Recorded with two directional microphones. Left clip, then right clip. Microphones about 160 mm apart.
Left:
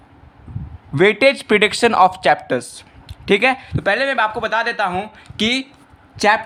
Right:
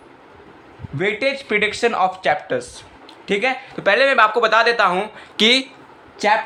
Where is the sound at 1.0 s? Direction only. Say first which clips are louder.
Left 7 dB; 50° left (ahead or behind); by 5.7 s 15° left (ahead or behind).